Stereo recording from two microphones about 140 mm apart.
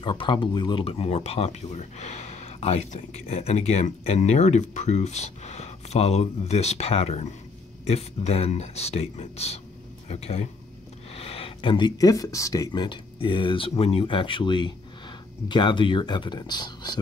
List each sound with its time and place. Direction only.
0.0 s speech: 35° left (ahead or behind)